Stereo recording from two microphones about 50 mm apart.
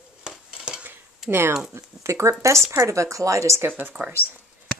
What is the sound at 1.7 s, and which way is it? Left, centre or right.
Speech, right.